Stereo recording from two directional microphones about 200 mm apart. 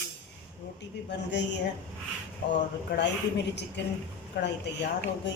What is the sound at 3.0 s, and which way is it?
Speech, 60° left (ahead or behind).